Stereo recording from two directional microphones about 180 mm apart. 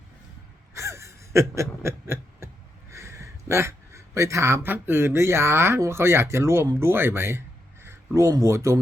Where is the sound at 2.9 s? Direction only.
15° right (ahead or behind).